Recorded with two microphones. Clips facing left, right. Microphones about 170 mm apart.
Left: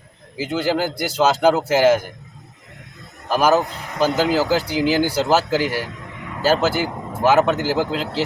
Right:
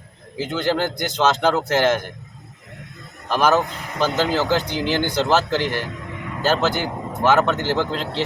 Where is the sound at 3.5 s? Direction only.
35° left (ahead or behind).